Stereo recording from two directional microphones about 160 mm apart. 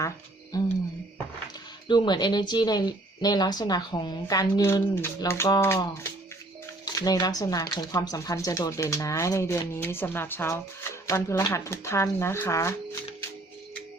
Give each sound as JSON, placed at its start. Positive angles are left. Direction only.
{"t": 0.5, "sound": "speech", "side_deg": 20}
{"t": 1.9, "sound": "speech", "side_deg": 30}
{"t": 6.8, "sound": "speech", "side_deg": 25}